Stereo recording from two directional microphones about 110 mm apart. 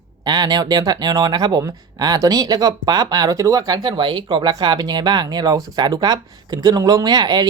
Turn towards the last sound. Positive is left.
turn(degrees=-40)  # may be behind; listen again after turning